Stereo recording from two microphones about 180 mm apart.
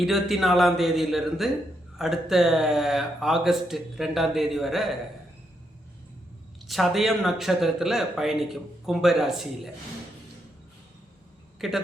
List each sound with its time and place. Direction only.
0.0 s speech: centre (ahead or behind)
6.7 s speech: centre (ahead or behind)
11.6 s speech: centre (ahead or behind)